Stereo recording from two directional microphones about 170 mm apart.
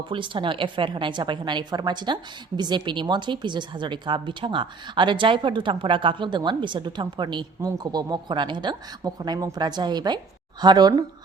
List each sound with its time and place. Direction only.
0.1 s speech: 30° right (ahead or behind)